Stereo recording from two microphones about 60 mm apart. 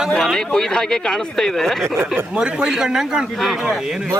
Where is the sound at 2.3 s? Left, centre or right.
Centre.